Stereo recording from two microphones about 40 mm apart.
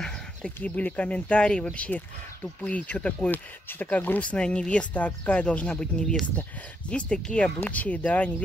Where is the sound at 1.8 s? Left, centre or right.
Left.